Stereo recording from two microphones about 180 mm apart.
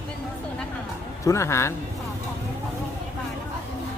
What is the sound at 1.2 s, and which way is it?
Speech, 15° left (ahead or behind).